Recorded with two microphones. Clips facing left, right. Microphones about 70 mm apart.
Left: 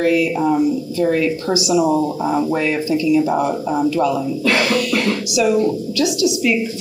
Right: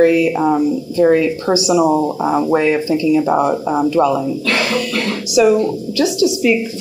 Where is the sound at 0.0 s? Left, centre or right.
Right.